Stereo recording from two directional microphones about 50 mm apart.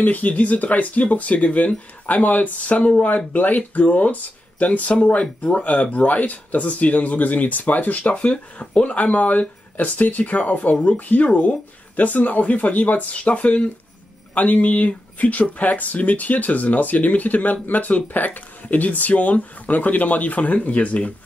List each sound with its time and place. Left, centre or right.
0.0 s speech: left